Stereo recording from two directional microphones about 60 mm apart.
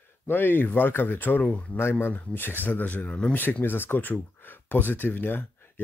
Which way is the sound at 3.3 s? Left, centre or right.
Left.